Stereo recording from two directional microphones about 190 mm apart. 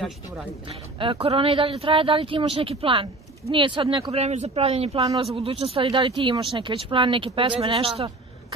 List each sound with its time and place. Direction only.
0.7 s speech: 25° right (ahead or behind)